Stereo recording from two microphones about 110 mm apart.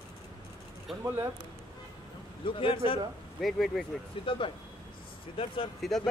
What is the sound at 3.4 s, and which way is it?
Speech, centre (ahead or behind).